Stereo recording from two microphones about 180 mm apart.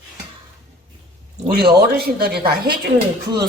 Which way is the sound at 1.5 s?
60° right (ahead or behind).